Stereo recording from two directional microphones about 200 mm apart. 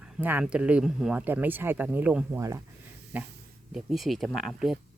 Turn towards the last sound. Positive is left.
turn(degrees=0)  # may be behind; listen again after turning